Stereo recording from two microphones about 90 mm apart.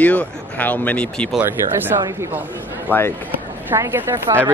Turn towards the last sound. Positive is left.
turn(degrees=-25)  # may be behind; listen again after turning